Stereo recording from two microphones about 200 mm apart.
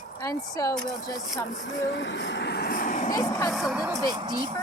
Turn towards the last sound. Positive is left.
turn(degrees=-20)  # may be behind; listen again after turning